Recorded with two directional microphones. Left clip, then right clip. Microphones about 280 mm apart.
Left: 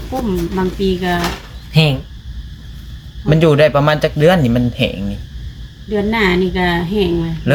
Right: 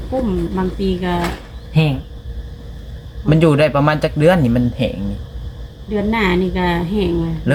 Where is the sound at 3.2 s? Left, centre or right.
Centre.